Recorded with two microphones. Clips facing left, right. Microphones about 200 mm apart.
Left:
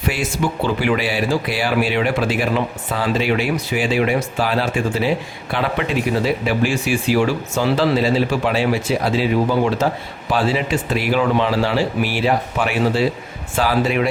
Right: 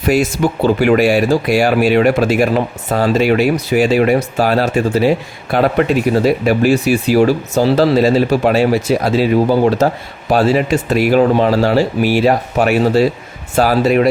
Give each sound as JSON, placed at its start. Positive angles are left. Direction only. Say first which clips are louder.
{"t": 0.0, "sound": "speech", "louder": "right 7 dB", "side_deg": -40}